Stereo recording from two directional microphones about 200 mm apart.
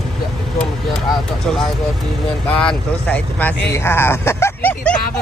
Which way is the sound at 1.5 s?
Centre (ahead or behind).